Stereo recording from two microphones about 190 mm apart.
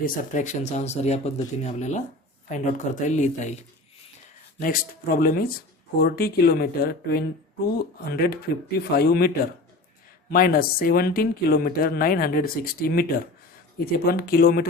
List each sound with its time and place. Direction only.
0.0 s speech: 40° left (ahead or behind)
4.6 s speech: 50° left (ahead or behind)